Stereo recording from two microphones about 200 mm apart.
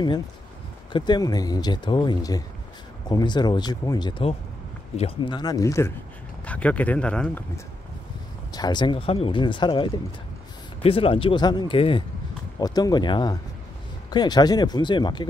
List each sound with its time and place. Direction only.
0.9 s speech: 20° left (ahead or behind)
8.5 s speech: 20° left (ahead or behind)